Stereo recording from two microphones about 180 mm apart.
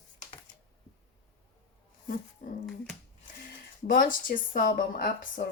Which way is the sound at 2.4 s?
45° left (ahead or behind).